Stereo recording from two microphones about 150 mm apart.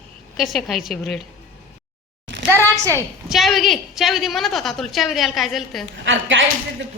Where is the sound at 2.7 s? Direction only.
20° right (ahead or behind).